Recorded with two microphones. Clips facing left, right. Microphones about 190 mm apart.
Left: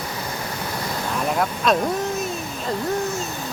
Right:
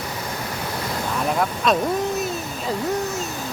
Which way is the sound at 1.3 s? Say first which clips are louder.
Left 1 dB; centre (ahead or behind).